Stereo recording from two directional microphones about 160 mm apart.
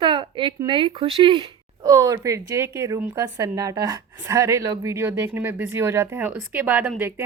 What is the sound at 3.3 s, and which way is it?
Speech, 25° right (ahead or behind).